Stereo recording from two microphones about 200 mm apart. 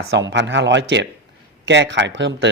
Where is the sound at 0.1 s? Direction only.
65° right (ahead or behind).